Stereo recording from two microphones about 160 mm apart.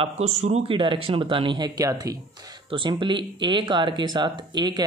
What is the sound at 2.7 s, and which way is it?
Speech, 30° right (ahead or behind).